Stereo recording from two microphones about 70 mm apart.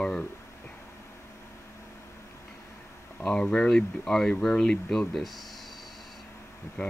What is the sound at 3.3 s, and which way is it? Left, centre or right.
Speech, centre.